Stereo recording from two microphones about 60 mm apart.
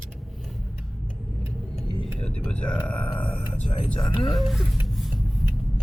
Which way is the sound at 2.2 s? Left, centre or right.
Centre.